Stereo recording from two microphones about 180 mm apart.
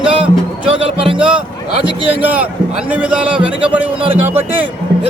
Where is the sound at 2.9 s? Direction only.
5° right (ahead or behind).